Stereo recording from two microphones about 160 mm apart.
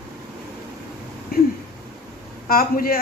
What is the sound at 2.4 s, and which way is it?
Speech, 65° left (ahead or behind).